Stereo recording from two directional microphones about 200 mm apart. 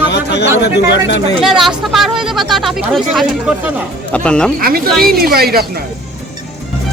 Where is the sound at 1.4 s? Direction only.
Centre (ahead or behind).